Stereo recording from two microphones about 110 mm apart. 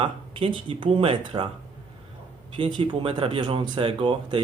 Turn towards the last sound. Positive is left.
turn(degrees=-50)  # may be behind; listen again after turning